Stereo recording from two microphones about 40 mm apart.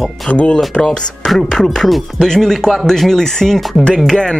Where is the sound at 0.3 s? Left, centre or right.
Left.